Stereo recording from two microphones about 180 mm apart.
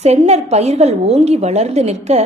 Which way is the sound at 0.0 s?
35° right (ahead or behind).